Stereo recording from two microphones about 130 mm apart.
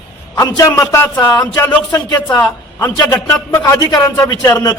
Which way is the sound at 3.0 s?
20° left (ahead or behind).